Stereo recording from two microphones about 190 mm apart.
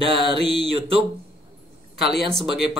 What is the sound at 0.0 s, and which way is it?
Speech, 30° right (ahead or behind).